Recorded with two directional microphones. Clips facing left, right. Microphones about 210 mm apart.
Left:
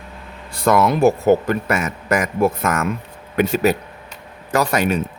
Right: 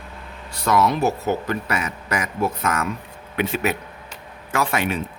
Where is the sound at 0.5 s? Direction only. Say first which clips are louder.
Left 3 dB; 50° left (ahead or behind).